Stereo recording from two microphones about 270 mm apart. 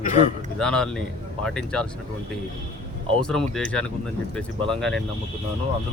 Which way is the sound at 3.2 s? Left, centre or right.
Centre.